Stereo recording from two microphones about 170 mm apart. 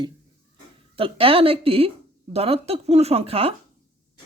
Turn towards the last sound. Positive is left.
turn(degrees=-35)  # may be behind; listen again after turning